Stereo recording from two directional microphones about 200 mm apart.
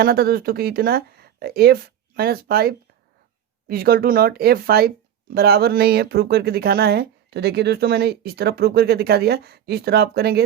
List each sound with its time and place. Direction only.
0.0 s speech: 50° right (ahead or behind)